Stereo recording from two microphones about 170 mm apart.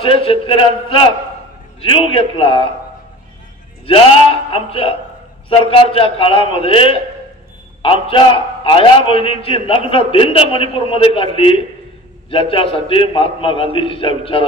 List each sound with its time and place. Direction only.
0.0 s a man's voice: 30° left (ahead or behind)
3.8 s a man's voice: 30° left (ahead or behind)